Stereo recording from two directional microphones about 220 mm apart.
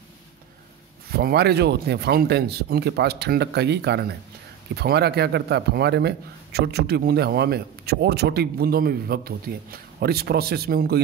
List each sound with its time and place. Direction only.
1.1 s a man's voice: 45° right (ahead or behind)